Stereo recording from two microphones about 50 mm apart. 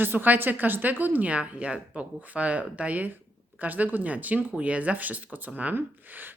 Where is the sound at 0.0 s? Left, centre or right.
Right.